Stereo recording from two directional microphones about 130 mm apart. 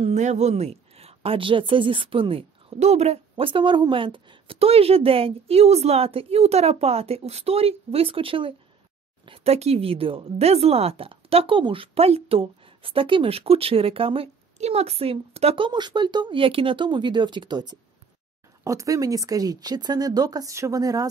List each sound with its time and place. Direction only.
0.0 s a woman's voice: 60° right (ahead or behind); by 17.7 s 35° right (ahead or behind)
18.6 s speech: 25° right (ahead or behind)